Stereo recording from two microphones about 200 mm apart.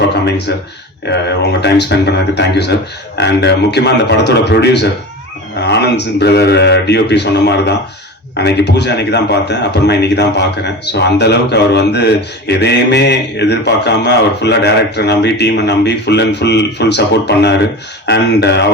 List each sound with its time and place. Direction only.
0.3 s a man's voice: 60° left (ahead or behind)